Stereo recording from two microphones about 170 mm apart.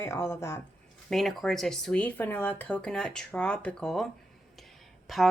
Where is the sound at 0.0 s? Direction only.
15° left (ahead or behind).